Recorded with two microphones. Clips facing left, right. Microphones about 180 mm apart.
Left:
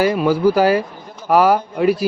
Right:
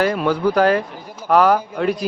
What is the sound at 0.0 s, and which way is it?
Speech, 5° left (ahead or behind).